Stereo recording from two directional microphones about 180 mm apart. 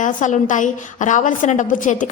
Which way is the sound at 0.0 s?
45° left (ahead or behind).